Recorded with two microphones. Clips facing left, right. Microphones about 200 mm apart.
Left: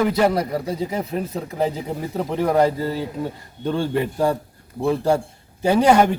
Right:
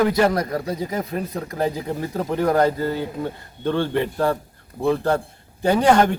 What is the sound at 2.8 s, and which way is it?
Speech, 30° left (ahead or behind).